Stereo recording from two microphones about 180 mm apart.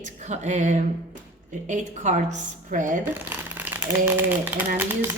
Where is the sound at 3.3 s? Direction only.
10° right (ahead or behind).